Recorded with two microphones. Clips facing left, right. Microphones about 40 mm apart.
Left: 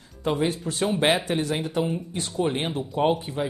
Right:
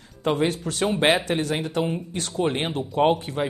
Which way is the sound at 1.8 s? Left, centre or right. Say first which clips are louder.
Right 1 dB; centre.